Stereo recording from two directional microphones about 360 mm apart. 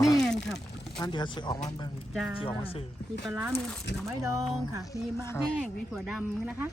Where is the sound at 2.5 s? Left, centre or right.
Centre.